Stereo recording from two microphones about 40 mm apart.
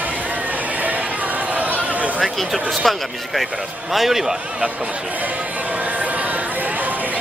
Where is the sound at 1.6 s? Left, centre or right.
Right.